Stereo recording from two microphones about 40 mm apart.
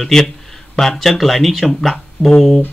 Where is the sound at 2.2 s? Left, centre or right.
Left.